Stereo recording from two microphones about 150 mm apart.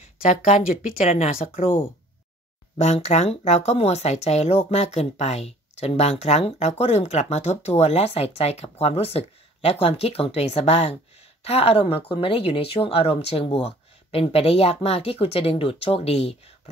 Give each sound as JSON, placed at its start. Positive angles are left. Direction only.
{"t": 0.3, "sound": "speech", "side_deg": 50}
{"t": 2.8, "sound": "speech", "side_deg": 45}